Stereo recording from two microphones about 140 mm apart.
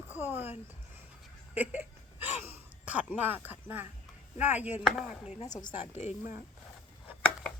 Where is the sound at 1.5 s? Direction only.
15° right (ahead or behind).